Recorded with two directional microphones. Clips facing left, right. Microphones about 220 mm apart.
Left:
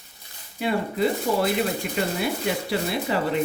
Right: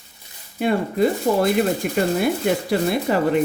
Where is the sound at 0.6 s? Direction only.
45° right (ahead or behind).